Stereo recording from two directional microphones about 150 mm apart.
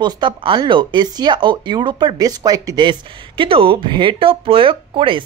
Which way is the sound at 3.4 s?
35° right (ahead or behind).